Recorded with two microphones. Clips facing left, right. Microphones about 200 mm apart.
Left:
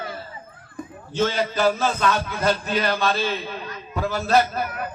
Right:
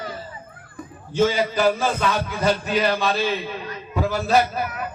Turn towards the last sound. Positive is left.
turn(degrees=0)  # may be behind; listen again after turning